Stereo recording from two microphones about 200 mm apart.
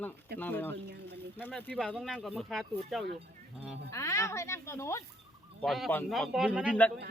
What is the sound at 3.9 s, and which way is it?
Speech, 15° left (ahead or behind).